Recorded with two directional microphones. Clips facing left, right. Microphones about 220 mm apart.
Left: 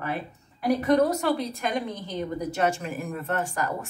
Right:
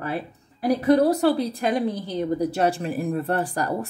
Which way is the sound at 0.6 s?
35° right (ahead or behind).